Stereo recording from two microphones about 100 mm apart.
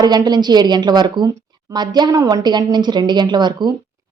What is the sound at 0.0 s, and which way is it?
Speech, 40° right (ahead or behind).